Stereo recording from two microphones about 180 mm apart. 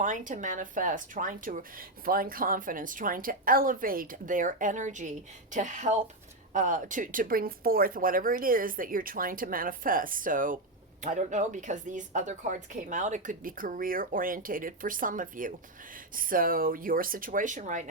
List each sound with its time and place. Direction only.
0.0 s speech: 45° right (ahead or behind)